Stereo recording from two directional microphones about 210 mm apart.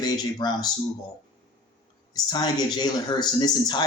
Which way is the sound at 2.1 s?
20° left (ahead or behind).